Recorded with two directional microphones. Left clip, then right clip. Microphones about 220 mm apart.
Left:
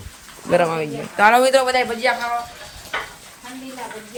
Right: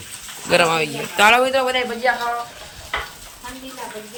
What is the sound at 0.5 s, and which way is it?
Speech, 15° left (ahead or behind).